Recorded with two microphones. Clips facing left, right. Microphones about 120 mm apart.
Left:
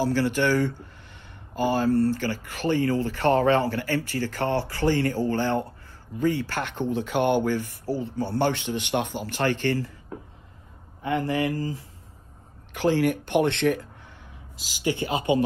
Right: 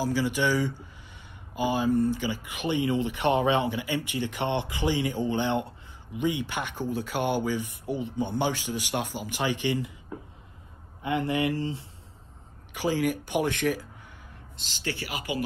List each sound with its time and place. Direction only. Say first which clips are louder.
0.0 s speech: left 3 dB; 10° right (ahead or behind)
11.0 s speech: left 2 dB; 20° right (ahead or behind)
12.7 s speech: left 4 dB; 5° right (ahead or behind)
14.6 s speech: left 8 dB; 10° left (ahead or behind); by 15.4 s 25° left (ahead or behind)